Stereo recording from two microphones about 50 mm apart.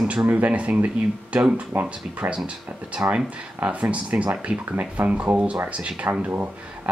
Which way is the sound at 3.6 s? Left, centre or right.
Right.